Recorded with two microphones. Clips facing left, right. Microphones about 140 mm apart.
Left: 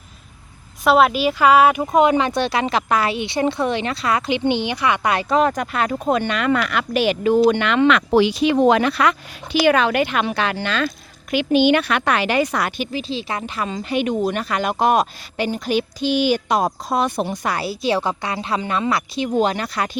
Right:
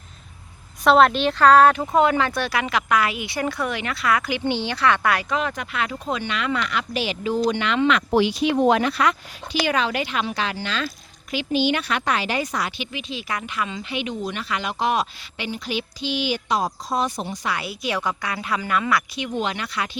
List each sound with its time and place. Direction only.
0.9 s speech: 5° left (ahead or behind)
5.3 s a woman's voice: 40° left (ahead or behind); by 17.5 s 55° left (ahead or behind)
17.5 s a woman's voice: 35° left (ahead or behind)